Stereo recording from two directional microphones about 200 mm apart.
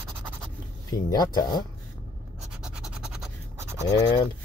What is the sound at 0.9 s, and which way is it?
Speech, 20° left (ahead or behind).